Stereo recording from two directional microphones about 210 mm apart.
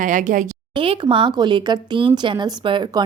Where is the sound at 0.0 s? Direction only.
35° right (ahead or behind).